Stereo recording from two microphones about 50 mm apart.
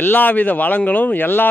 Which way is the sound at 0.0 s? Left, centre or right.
Left.